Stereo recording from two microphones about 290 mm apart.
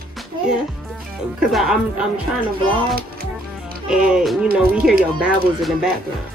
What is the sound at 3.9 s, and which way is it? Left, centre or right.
Speech, centre.